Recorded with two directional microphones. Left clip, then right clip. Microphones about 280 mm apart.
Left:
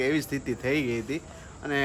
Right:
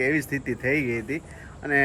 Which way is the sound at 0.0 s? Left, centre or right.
Centre.